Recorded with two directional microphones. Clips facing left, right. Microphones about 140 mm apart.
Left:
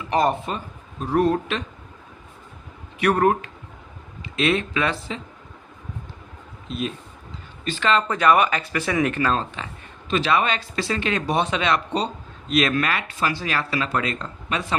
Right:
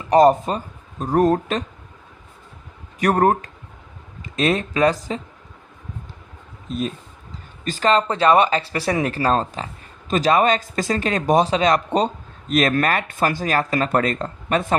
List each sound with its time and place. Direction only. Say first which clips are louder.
0.1 s speech: right 7 dB; 40° right (ahead or behind)
3.0 s speech: right 2 dB; 40° right (ahead or behind)
6.7 s speech: right 3 dB; 40° right (ahead or behind)